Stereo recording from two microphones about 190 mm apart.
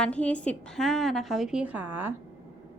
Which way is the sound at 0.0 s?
5° left (ahead or behind).